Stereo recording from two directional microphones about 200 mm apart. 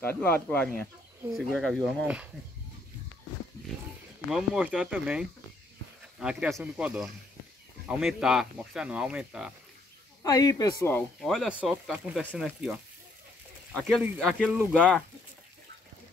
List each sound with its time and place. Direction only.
0.0 s speech: 10° left (ahead or behind)
4.3 s speech: 5° right (ahead or behind)
10.2 s speech: 15° left (ahead or behind)
11.0 s speech: centre (ahead or behind)